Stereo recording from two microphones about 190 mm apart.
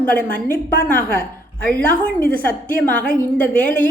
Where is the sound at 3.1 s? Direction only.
10° left (ahead or behind).